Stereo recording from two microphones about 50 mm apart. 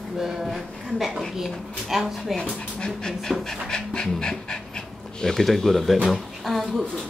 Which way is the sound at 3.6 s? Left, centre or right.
Centre.